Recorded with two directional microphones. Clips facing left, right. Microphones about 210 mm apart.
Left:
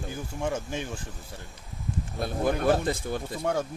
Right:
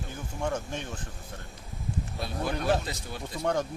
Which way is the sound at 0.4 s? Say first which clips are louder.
Left 1 dB; 5° left (ahead or behind).